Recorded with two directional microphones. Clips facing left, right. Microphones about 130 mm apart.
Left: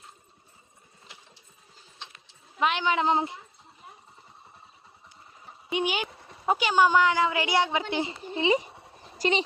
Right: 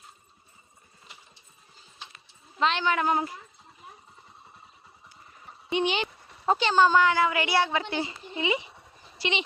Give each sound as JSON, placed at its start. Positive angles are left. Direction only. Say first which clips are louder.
{"t": 2.6, "sound": "speech", "louder": "even", "side_deg": 15}
{"t": 5.6, "sound": "speech", "louder": "right 2 dB", "side_deg": 10}
{"t": 8.8, "sound": "a sound", "louder": "left 5 dB", "side_deg": 40}